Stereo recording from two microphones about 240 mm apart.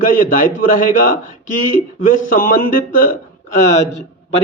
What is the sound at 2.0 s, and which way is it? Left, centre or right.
A man's voice, left.